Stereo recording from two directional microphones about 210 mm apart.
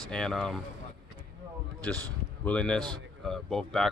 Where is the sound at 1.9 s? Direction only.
5° left (ahead or behind).